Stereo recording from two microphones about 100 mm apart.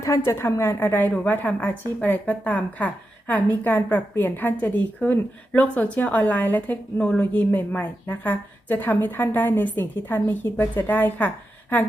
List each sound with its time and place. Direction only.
0.0 s a woman's voice: 30° left (ahead or behind)